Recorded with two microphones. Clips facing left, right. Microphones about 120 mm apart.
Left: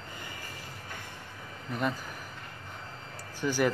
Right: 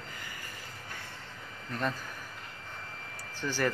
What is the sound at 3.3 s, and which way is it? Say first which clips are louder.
Speech: left 4 dB; 10° left (ahead or behind).